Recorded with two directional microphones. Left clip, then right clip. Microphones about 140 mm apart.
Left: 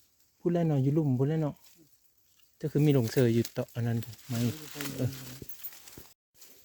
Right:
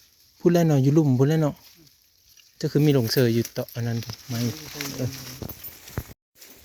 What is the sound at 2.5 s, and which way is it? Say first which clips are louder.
Speech: right 6 dB; centre (ahead or behind).